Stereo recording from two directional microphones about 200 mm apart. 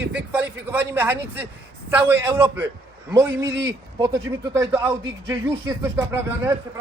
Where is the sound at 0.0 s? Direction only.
5° right (ahead or behind).